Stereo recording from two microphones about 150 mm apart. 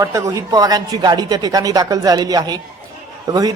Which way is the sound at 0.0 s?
20° right (ahead or behind).